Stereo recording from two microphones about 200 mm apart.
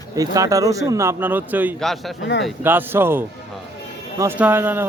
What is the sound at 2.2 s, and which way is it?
Speech, 60° left (ahead or behind).